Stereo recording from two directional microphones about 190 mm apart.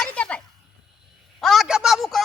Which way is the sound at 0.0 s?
5° left (ahead or behind).